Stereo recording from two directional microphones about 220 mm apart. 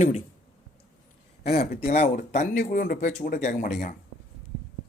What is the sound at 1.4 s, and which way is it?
Speech, 45° left (ahead or behind).